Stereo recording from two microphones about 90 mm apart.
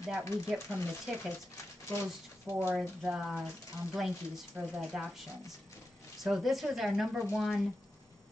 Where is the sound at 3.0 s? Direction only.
5° right (ahead or behind).